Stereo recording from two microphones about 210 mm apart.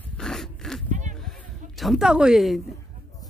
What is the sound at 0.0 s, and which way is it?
Dog, centre (ahead or behind).